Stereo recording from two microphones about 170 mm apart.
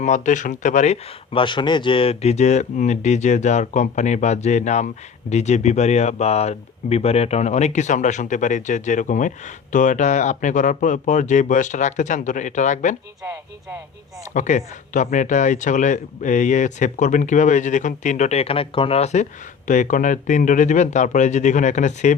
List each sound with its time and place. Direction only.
0.0 s speech: 45° left (ahead or behind)
1.3 s speech: 30° left (ahead or behind); by 13.0 s 45° left (ahead or behind)
14.3 s speech: 45° left (ahead or behind)